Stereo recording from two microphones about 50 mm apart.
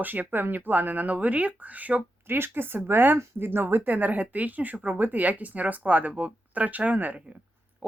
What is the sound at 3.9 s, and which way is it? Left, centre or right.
Speech, right.